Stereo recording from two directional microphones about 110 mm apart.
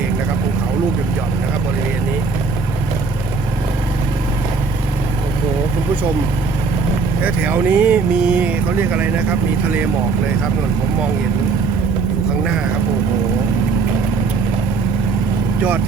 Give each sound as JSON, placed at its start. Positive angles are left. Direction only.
{"t": 7.3, "sound": "speech", "side_deg": -15}